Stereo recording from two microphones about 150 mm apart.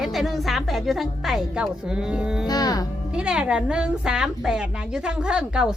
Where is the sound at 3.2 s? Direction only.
5° right (ahead or behind).